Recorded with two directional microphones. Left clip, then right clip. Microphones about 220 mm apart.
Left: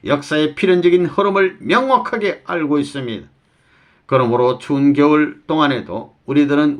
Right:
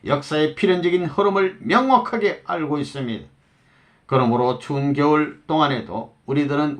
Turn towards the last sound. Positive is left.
turn(degrees=35)  # may be behind; listen again after turning